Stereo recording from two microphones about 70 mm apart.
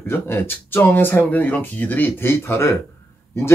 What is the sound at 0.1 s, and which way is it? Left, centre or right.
Speech, left.